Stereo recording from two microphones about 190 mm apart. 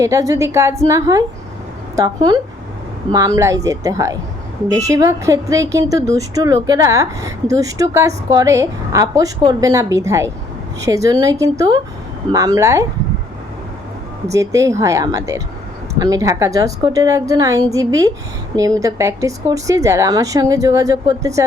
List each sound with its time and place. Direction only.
0.0 s a woman's voice: 15° right (ahead or behind)
14.3 s a woman's voice: 15° right (ahead or behind)